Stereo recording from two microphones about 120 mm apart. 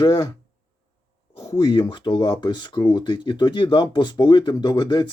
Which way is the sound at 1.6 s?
45° left (ahead or behind).